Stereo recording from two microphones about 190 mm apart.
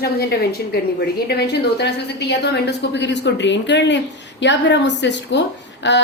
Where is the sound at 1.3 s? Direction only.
60° left (ahead or behind).